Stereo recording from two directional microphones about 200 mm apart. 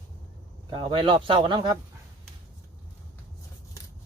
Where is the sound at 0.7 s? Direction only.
25° right (ahead or behind).